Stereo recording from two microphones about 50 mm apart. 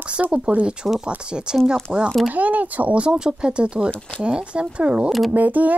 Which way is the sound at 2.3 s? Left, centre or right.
Right.